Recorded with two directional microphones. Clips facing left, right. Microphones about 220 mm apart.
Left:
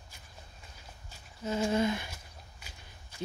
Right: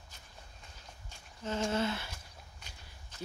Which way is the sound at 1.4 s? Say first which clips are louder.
Left 4 dB; 10° left (ahead or behind).